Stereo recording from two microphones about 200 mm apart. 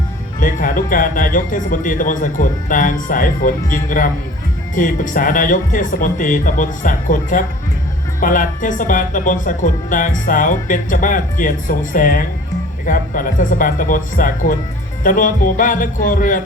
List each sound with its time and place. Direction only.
0.3 s speech: 45° left (ahead or behind)